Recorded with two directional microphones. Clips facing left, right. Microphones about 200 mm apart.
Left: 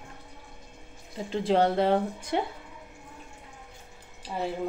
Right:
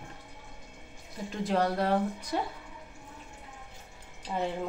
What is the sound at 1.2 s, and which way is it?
Speech, 30° left (ahead or behind).